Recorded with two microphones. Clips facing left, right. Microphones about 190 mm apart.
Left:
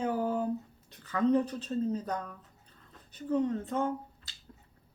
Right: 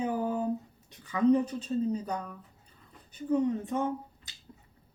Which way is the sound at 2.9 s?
10° right (ahead or behind).